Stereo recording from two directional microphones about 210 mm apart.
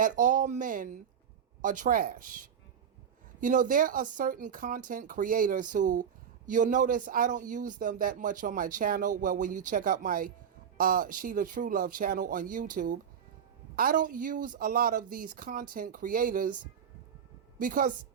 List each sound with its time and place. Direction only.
0.0 s speech: 40° right (ahead or behind)
17.6 s speech: 40° right (ahead or behind)